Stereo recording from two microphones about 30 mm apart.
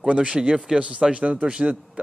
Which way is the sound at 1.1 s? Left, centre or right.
Right.